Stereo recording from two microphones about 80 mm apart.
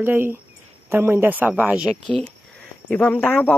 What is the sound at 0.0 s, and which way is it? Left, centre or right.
Speech, right.